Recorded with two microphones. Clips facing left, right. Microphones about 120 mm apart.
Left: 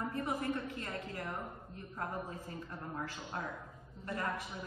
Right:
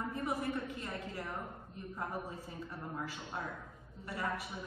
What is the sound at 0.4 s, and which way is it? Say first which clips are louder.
A woman's voice: even; 15° right (ahead or behind).